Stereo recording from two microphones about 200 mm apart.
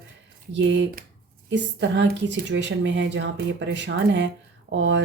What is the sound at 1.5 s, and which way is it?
A woman's voice, 65° right (ahead or behind).